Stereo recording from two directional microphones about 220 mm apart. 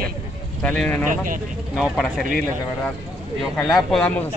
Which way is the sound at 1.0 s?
35° right (ahead or behind).